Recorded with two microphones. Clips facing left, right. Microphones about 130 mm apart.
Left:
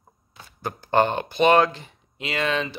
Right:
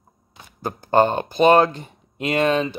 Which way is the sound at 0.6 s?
40° right (ahead or behind).